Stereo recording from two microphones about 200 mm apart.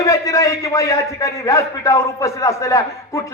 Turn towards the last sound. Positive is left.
turn(degrees=15)  # may be behind; listen again after turning